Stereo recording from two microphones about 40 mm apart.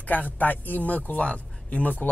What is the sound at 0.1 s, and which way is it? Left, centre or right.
Speech, left.